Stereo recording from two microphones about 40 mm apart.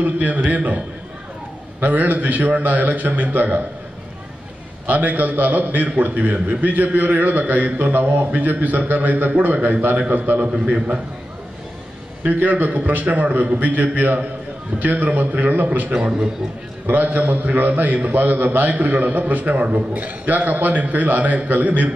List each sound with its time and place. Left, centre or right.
0.0 s a man's voice: right
4.8 s a man's voice: right
12.3 s a man's voice: right
16.0 s a man's voice: right
16.8 s a man's voice: right